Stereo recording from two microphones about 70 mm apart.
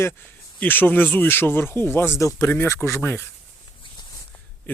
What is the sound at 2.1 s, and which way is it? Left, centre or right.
Speech, left.